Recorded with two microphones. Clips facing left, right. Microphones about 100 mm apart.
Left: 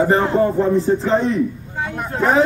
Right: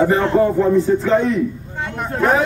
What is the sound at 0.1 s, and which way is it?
A man's voice, 30° left (ahead or behind).